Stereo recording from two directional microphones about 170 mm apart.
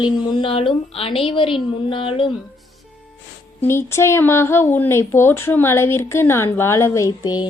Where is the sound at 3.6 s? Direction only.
15° left (ahead or behind).